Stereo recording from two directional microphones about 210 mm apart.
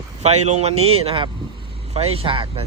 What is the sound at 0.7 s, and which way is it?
Speech, 90° right.